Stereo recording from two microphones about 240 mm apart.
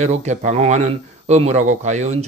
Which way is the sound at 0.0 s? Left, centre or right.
Right.